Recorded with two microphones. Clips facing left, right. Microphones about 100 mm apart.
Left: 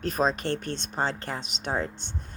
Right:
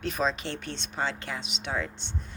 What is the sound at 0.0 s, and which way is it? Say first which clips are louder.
Speech: left 3 dB; 40° left (ahead or behind).